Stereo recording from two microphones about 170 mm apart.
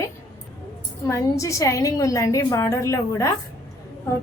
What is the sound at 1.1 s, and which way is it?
A woman's voice, 20° left (ahead or behind).